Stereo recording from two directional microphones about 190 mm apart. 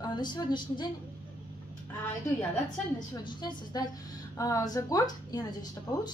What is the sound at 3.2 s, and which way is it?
A woman's voice, 25° left (ahead or behind).